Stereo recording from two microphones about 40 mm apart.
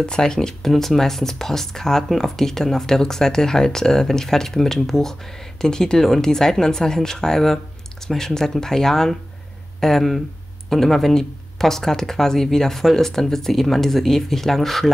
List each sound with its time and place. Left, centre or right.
0.0 s speech: centre